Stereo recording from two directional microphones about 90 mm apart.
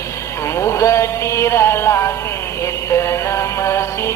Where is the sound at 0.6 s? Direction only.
30° left (ahead or behind).